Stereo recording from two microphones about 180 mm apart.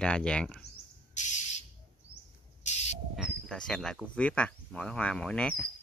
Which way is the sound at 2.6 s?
40° left (ahead or behind).